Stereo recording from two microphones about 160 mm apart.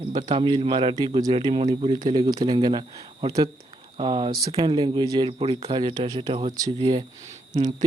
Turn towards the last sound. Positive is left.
turn(degrees=-25)  # may be behind; listen again after turning